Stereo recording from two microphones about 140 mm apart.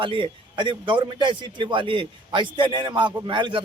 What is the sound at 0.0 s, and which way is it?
A man's voice, 40° right (ahead or behind).